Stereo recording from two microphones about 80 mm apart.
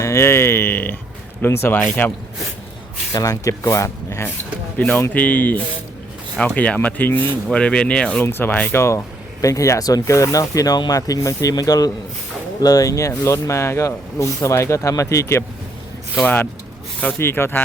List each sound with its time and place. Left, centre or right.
0.0 s speech: left
1.4 s rub: left
3.1 s speech: left
5.1 s rub: centre
6.3 s speech: centre
6.7 s rub: left
7.5 s speech: centre
8.2 s rub: left
8.8 s speech: left
16.2 s rub: left